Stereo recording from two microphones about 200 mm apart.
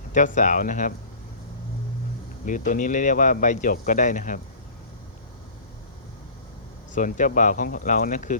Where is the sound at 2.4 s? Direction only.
40° left (ahead or behind).